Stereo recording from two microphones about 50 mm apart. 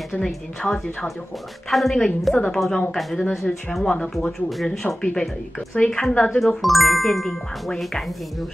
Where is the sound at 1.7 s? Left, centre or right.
Centre.